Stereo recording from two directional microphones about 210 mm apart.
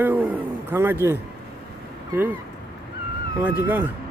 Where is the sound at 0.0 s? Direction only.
10° right (ahead or behind).